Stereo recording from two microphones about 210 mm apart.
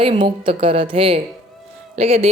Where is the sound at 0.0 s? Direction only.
25° right (ahead or behind).